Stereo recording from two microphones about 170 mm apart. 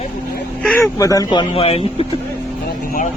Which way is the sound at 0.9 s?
20° left (ahead or behind).